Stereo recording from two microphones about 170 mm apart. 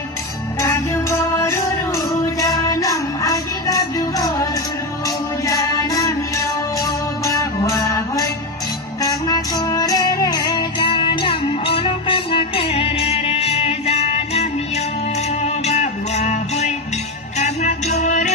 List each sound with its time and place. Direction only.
0.6 s music: 15° left (ahead or behind)
9.3 s music: 20° left (ahead or behind); by 16.7 s 40° left (ahead or behind)
18.0 s music: 45° left (ahead or behind)